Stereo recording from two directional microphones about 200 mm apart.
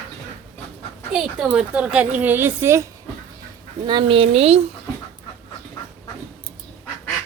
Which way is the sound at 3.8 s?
25° right (ahead or behind).